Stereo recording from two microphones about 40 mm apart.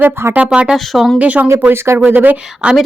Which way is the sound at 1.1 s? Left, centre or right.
Right.